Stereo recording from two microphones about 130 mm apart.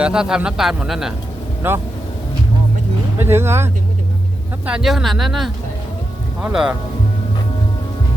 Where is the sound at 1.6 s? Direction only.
15° right (ahead or behind).